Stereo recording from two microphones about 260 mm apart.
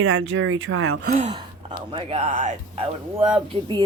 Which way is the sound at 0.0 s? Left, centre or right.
Right.